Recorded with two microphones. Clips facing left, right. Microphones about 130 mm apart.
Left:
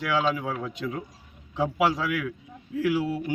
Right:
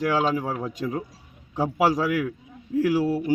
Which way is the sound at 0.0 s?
40° right (ahead or behind).